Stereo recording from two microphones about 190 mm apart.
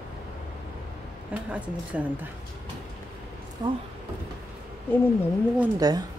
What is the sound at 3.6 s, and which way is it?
Speech, 20° right (ahead or behind).